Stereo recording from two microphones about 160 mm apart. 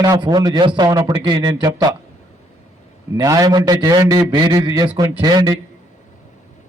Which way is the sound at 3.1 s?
20° right (ahead or behind).